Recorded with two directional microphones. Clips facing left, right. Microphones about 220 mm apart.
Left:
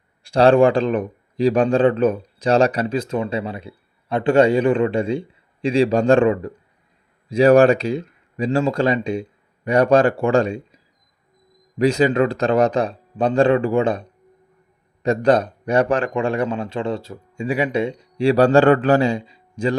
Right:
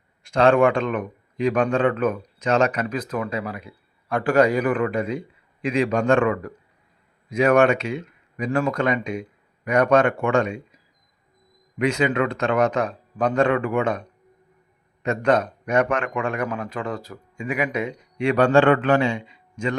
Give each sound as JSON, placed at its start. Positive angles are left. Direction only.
{"t": 0.2, "sound": "a man's voice", "side_deg": 35}
{"t": 11.8, "sound": "a man's voice", "side_deg": 35}